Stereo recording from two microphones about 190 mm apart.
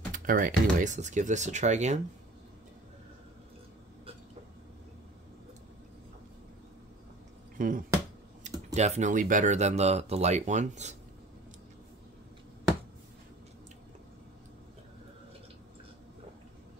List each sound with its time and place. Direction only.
0.1 s speech: 45° right (ahead or behind)
7.5 s speech: 45° right (ahead or behind)